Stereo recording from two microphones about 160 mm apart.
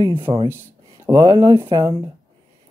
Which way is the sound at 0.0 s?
30° right (ahead or behind).